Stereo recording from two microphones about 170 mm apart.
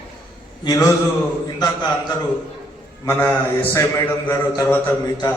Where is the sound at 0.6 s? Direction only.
20° left (ahead or behind).